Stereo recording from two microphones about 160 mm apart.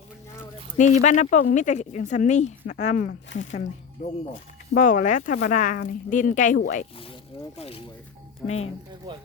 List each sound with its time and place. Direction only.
0.8 s speech: 50° left (ahead or behind)
6.9 s speech: 35° left (ahead or behind)
8.4 s speech: 5° left (ahead or behind)